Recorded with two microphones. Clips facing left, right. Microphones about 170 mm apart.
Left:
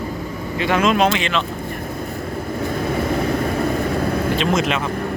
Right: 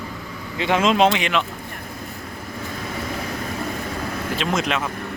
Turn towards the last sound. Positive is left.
turn(degrees=0)  # may be behind; listen again after turning